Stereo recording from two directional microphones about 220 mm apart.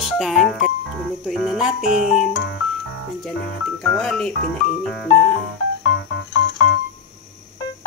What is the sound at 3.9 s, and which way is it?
Speech, 5° left (ahead or behind).